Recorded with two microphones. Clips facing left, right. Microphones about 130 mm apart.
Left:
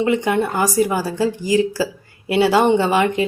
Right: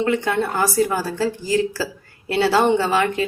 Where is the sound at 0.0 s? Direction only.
15° left (ahead or behind).